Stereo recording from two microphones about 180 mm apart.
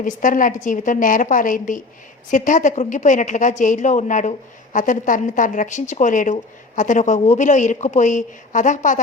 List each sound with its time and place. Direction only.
0.0 s a woman's voice: 45° left (ahead or behind)